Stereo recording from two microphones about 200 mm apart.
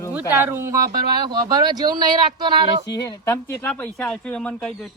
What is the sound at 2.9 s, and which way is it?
Speech, 20° left (ahead or behind).